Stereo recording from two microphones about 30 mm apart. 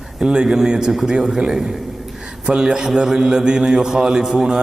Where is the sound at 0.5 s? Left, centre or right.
Right.